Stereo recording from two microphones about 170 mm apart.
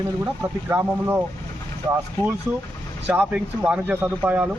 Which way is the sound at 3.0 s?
10° right (ahead or behind).